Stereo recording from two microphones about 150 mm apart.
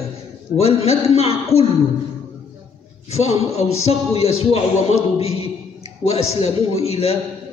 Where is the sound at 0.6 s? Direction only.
45° left (ahead or behind).